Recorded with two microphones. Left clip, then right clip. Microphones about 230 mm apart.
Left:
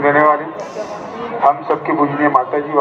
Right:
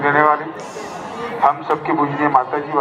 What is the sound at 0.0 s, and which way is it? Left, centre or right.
Speech, centre.